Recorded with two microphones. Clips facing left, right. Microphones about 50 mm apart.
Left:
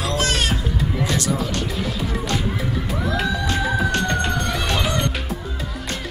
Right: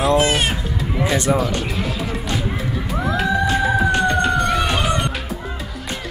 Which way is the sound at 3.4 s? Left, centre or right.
Centre.